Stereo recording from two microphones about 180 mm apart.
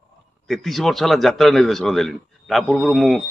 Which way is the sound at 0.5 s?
Centre (ahead or behind).